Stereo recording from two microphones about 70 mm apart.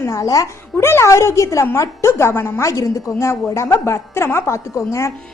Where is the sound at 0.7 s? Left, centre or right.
Left.